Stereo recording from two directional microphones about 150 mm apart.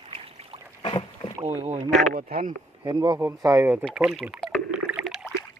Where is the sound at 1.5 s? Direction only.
45° right (ahead or behind).